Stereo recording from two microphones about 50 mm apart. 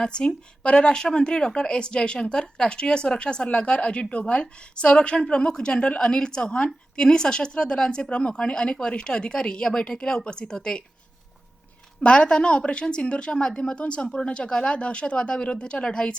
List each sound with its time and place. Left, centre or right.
0.0 s speech: centre
11.9 s a woman's voice: centre